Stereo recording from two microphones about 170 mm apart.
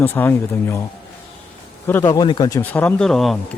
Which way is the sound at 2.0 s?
25° left (ahead or behind).